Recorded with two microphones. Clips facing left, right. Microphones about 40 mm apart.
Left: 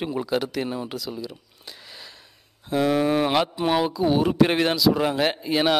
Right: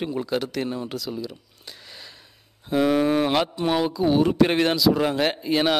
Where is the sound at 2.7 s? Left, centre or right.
Centre.